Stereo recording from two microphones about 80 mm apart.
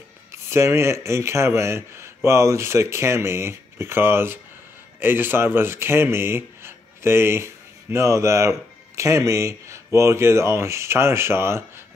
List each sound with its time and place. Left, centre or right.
0.3 s a man's voice: right